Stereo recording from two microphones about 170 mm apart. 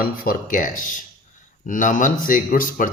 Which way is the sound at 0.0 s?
55° left (ahead or behind).